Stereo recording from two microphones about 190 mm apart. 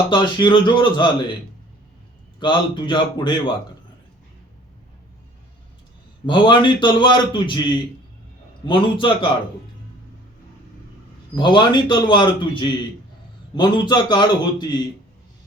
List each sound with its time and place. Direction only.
0.1 s a man's voice: 25° left (ahead or behind)
2.4 s a man's voice: 25° left (ahead or behind)
6.2 s a man's voice: 25° left (ahead or behind)
11.3 s a man's voice: 25° left (ahead or behind)